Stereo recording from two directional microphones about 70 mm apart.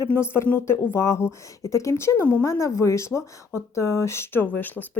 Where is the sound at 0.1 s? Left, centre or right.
Left.